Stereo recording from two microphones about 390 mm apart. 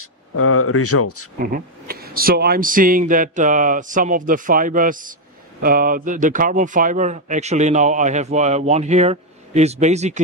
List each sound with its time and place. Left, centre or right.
0.0 s speech: left
1.4 s a man's voice: right